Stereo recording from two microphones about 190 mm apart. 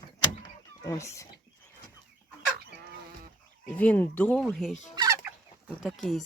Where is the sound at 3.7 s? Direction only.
10° left (ahead or behind).